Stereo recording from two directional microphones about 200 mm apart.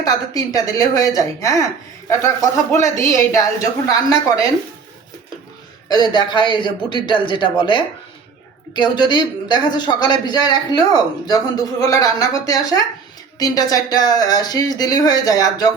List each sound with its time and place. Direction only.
0.0 s speech: 15° left (ahead or behind)
5.9 s a man's voice: 20° left (ahead or behind)